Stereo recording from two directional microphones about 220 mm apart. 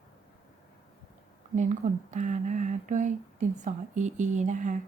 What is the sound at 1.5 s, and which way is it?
Speech, 35° right (ahead or behind).